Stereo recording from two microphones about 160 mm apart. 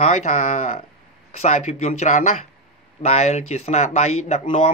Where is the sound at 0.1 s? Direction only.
50° left (ahead or behind).